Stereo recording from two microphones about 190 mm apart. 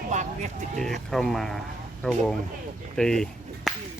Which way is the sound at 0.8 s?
Centre (ahead or behind).